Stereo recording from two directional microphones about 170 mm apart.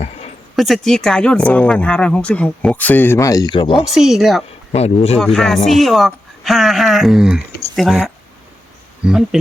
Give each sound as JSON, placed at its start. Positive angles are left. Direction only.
{"t": 0.0, "sound": "a sound", "side_deg": 40}
{"t": 0.5, "sound": "speech", "side_deg": 0}
{"t": 3.9, "sound": "speech", "side_deg": 0}
{"t": 4.7, "sound": "speech", "side_deg": 40}
{"t": 5.2, "sound": "speech", "side_deg": 0}